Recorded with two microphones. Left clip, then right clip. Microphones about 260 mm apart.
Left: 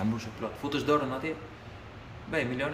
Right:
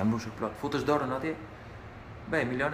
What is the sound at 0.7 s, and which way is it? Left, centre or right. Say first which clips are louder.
Speech: left 2 dB; centre.